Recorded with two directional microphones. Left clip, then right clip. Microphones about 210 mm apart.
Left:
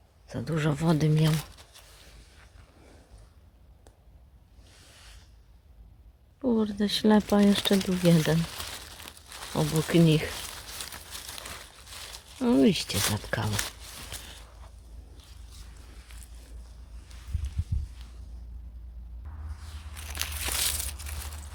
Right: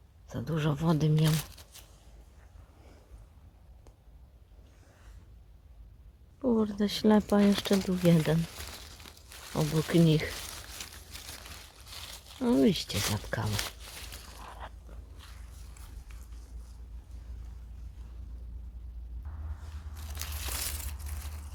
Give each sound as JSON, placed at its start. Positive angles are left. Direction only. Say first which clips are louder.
{"t": 0.3, "sound": "speech", "louder": "left 3 dB", "side_deg": 15}
{"t": 1.3, "sound": "a sound", "louder": "left 2 dB", "side_deg": -5}
{"t": 6.4, "sound": "speech", "louder": "left 1 dB", "side_deg": 5}
{"t": 9.5, "sound": "speech", "louder": "left 3 dB", "side_deg": 15}
{"t": 12.4, "sound": "speech", "louder": "left 3 dB", "side_deg": 10}
{"t": 20.1, "sound": "a sound", "louder": "left 7 dB", "side_deg": 10}